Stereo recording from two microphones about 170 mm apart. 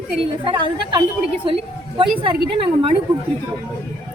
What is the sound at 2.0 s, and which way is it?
Speech, 30° right (ahead or behind).